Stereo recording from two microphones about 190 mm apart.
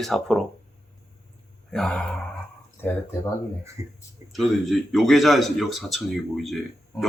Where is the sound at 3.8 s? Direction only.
15° right (ahead or behind).